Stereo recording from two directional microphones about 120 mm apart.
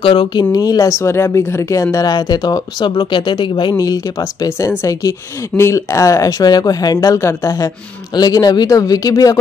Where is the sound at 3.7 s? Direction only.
30° left (ahead or behind).